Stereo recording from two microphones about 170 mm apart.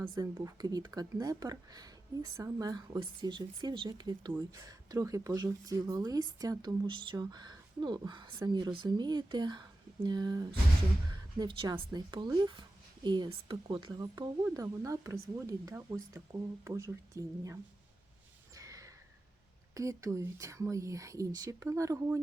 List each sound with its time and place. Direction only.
0.1 s speech: 25° right (ahead or behind)
18.5 s a sound: 20° right (ahead or behind)
19.7 s speech: 20° right (ahead or behind)